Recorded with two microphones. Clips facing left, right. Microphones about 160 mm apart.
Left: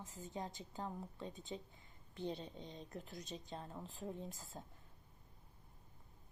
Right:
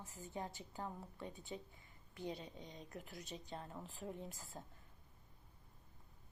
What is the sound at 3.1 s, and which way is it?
A woman's voice, 20° left (ahead or behind).